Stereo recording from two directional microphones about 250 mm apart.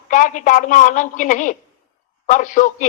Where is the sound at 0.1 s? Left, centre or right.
Left.